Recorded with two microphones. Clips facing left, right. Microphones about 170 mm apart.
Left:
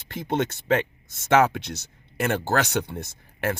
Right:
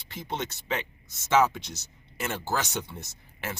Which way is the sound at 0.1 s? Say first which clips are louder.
Left 8 dB; 55° left (ahead or behind).